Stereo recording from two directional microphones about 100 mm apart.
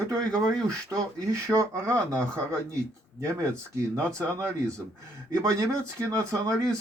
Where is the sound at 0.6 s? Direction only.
30° right (ahead or behind).